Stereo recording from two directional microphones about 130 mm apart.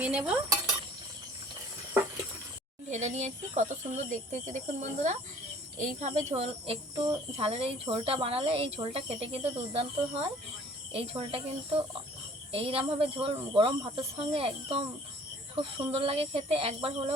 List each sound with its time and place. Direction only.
0.0 s cutlery: 10° right (ahead or behind)
2.9 s speech: 65° right (ahead or behind); by 17.2 s 50° right (ahead or behind)